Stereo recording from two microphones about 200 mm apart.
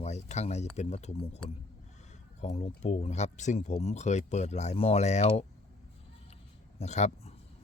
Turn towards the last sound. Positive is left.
turn(degrees=35)  # may be behind; listen again after turning